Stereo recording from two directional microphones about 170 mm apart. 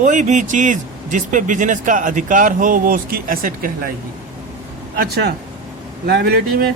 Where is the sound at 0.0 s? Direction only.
45° right (ahead or behind).